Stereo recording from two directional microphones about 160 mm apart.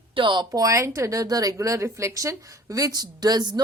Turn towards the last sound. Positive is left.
turn(degrees=-25)  # may be behind; listen again after turning